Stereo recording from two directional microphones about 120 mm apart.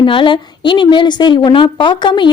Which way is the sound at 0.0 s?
45° left (ahead or behind).